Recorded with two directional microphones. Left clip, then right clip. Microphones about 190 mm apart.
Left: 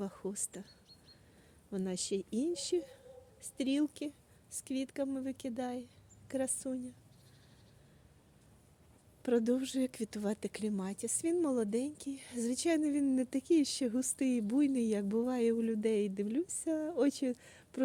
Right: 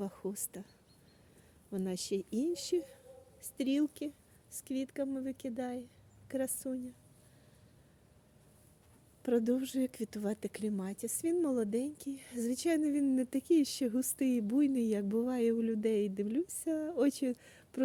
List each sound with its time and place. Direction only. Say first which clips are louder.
0.0 s speech: even; 15° right (ahead or behind)
1.7 s speech: even; 15° right (ahead or behind)
9.2 s speech: even; 10° right (ahead or behind)